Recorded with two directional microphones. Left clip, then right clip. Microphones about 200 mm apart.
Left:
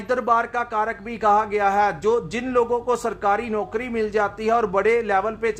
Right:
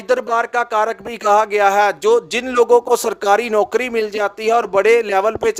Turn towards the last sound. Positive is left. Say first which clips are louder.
# right 5 dB
turn(degrees=-45)  # may be behind; listen again after turning